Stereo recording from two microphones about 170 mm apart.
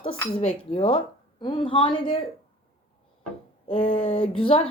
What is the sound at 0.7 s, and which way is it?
A woman's voice, 35° left (ahead or behind).